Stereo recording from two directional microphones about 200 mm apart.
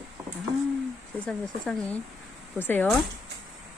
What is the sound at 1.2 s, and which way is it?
Speech, 5° left (ahead or behind).